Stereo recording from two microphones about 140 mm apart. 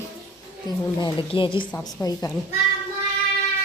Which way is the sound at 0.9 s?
35° left (ahead or behind).